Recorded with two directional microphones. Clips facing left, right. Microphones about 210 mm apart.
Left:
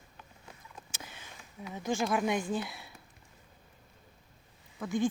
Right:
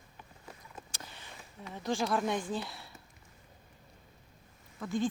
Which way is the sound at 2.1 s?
15° left (ahead or behind).